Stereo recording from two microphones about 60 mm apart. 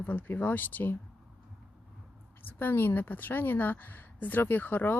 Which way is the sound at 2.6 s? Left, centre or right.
Left.